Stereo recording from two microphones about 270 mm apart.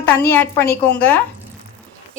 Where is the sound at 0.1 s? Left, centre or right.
Centre.